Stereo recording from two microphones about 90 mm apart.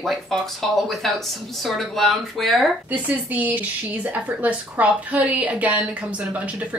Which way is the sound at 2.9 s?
20° right (ahead or behind).